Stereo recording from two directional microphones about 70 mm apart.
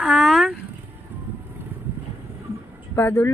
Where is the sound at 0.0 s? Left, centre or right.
Centre.